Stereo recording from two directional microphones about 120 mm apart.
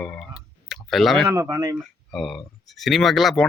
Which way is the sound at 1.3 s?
30° right (ahead or behind).